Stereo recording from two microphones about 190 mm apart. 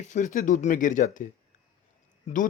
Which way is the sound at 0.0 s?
40° left (ahead or behind).